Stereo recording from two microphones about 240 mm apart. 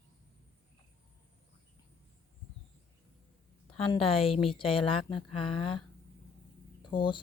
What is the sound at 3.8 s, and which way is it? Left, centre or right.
Speech, left.